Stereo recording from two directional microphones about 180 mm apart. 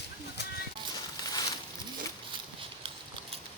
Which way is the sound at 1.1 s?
20° left (ahead or behind).